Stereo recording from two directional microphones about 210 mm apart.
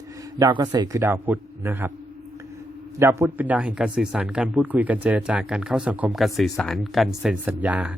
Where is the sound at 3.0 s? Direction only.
10° right (ahead or behind).